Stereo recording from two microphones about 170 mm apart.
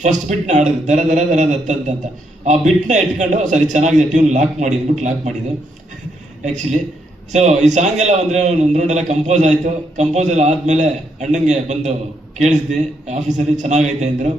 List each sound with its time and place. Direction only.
0.0 s a man's voice: 45° right (ahead or behind)
6.4 s a man's voice: 45° right (ahead or behind)
13.1 s a man's voice: 45° right (ahead or behind)